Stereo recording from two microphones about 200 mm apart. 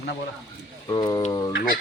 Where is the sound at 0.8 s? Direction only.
20° left (ahead or behind).